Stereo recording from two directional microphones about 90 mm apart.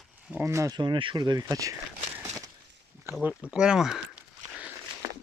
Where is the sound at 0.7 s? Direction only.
60° right (ahead or behind); by 1.8 s 40° right (ahead or behind).